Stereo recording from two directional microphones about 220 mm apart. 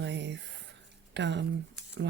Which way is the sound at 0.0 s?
50° right (ahead or behind).